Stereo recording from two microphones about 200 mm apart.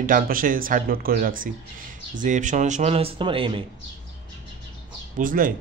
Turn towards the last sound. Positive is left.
turn(degrees=-45)  # may be behind; listen again after turning